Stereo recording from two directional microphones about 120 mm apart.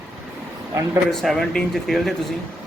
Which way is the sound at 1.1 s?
5° left (ahead or behind).